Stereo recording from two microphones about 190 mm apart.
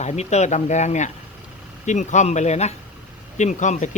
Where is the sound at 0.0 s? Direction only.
35° left (ahead or behind).